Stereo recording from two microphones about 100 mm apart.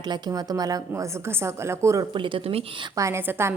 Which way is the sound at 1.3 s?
25° right (ahead or behind).